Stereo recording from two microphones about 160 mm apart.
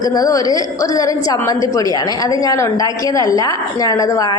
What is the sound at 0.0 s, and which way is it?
A woman's voice, 25° left (ahead or behind).